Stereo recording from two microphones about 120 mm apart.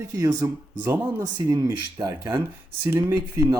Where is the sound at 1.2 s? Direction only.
30° right (ahead or behind).